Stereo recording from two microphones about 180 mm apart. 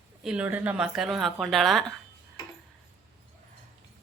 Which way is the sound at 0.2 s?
5° right (ahead or behind).